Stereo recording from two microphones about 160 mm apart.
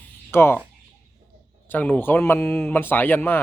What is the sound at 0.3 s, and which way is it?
Speech, 15° left (ahead or behind).